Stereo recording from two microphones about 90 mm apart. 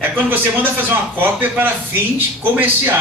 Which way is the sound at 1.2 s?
20° right (ahead or behind).